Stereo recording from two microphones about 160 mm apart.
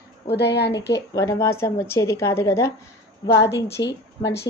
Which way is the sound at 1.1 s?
20° left (ahead or behind).